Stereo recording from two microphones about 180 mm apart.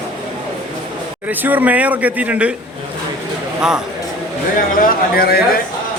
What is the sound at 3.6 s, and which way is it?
Speech, 5° right (ahead or behind).